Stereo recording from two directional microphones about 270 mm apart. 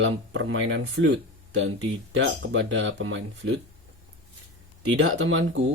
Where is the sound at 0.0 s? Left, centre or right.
Right.